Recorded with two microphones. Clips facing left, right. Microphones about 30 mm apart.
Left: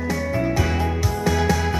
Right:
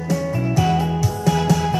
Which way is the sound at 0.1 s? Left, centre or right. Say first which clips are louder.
Right 2 dB; centre.